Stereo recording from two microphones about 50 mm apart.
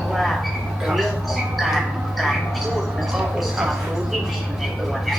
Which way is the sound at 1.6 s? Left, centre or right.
Centre.